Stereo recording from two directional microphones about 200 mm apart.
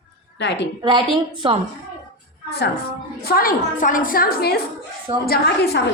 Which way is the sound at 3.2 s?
50° left (ahead or behind).